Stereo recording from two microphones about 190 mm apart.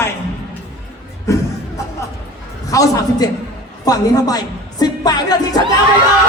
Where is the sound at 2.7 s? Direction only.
15° left (ahead or behind).